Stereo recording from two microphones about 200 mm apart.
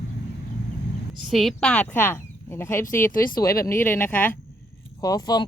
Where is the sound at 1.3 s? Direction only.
Centre (ahead or behind).